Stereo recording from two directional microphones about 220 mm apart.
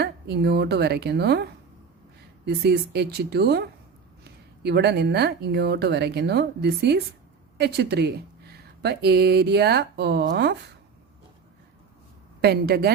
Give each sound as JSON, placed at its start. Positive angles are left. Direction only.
{"t": 0.0, "sound": "speech", "side_deg": -50}
{"t": 12.4, "sound": "speech", "side_deg": -45}